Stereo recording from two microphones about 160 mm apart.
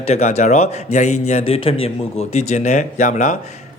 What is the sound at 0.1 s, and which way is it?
A man's voice, 45° left (ahead or behind).